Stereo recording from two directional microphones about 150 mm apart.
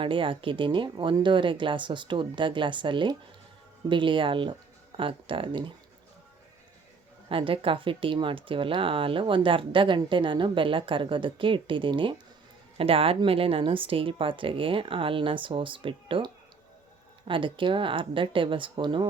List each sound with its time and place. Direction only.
0.0 s speech: 35° right (ahead or behind)
7.3 s speech: 35° right (ahead or behind)